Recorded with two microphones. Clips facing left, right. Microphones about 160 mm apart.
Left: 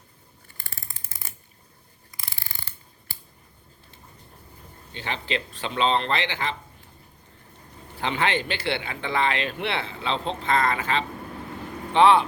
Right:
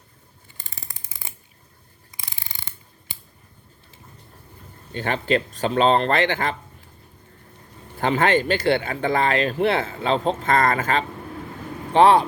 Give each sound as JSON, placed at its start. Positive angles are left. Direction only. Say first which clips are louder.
{"t": 0.5, "sound": "ratchet", "louder": "right 1 dB", "side_deg": -20}
{"t": 4.9, "sound": "speech", "louder": "right 8 dB", "side_deg": -50}
{"t": 7.9, "sound": "speech", "louder": "right 6 dB", "side_deg": -45}